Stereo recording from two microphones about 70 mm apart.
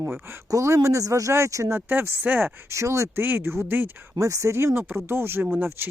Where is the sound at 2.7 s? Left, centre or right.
Right.